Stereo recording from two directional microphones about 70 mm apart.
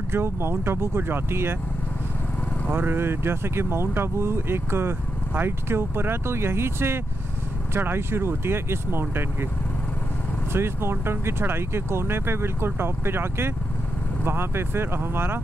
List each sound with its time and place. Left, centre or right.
0.1 s speech: right
2.7 s speech: right
10.5 s speech: right